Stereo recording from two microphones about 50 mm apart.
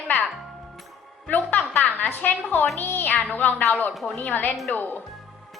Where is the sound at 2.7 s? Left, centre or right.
Left.